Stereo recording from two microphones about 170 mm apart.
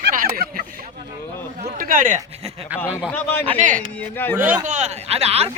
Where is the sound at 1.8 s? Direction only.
55° right (ahead or behind).